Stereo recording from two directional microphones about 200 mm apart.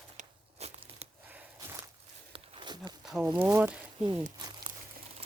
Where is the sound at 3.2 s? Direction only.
15° right (ahead or behind).